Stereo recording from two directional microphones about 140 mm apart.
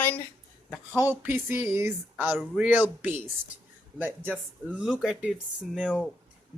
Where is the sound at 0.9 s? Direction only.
15° right (ahead or behind).